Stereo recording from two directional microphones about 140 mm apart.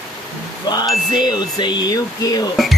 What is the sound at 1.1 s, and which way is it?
Speech, 30° left (ahead or behind).